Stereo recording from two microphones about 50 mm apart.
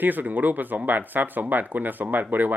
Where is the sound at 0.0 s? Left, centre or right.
Right.